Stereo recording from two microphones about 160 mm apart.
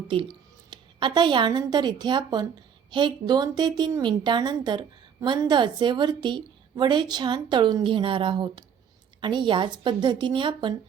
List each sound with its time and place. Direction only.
0.1 s a woman's voice: 30° right (ahead or behind)